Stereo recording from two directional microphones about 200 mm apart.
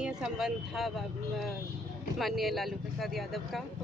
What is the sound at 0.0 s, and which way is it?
Speech, 5° right (ahead or behind).